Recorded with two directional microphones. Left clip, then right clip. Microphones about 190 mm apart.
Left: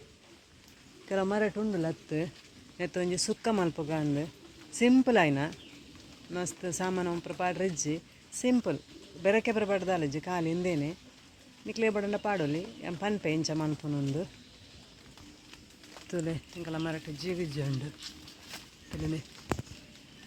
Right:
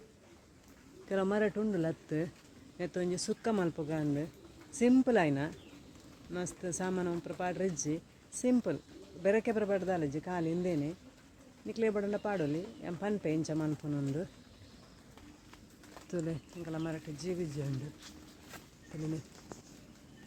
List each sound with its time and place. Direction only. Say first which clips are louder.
1.0 s speech: left 2 dB; centre (ahead or behind)
6.6 s speech: left 3 dB; 10° left (ahead or behind)
16.0 s speech: left 3 dB; 5° left (ahead or behind)